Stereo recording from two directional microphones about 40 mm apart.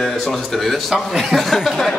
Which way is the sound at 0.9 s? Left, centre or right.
Centre.